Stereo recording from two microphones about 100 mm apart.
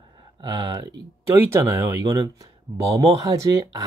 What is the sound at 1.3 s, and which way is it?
Speech, 20° right (ahead or behind).